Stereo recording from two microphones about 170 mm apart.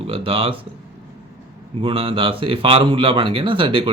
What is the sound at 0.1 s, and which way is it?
Speech, 35° right (ahead or behind).